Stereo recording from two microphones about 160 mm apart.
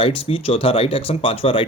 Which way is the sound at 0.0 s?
35° left (ahead or behind).